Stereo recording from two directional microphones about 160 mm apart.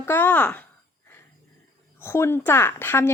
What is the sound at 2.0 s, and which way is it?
Speech, 15° left (ahead or behind).